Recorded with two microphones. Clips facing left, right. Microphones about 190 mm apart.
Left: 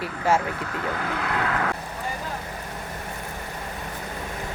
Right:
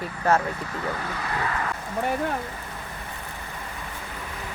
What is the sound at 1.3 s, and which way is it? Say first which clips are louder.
Vehicle: left 2 dB; 70° left (ahead or behind).